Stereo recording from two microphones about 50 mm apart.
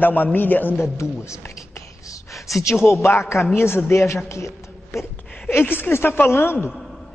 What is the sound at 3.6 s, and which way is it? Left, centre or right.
A man's voice, left.